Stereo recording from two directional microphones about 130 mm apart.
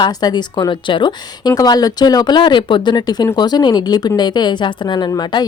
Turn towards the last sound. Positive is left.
turn(degrees=30)  # may be behind; listen again after turning